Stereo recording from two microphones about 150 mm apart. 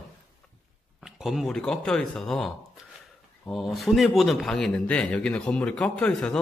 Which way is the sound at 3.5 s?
Centre (ahead or behind).